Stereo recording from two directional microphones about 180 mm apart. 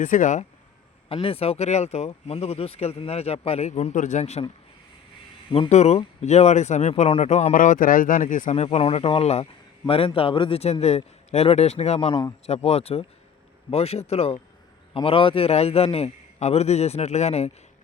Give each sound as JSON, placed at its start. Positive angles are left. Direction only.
{"t": 0.0, "sound": "speech", "side_deg": 45}
{"t": 1.0, "sound": "speech", "side_deg": 30}